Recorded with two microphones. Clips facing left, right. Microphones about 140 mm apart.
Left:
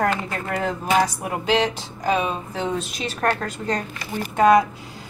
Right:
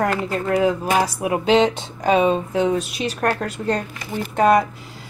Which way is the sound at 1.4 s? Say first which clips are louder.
Right 4 dB; 20° right (ahead or behind).